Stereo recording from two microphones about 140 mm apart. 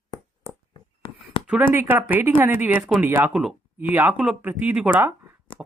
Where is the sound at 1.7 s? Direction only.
15° right (ahead or behind).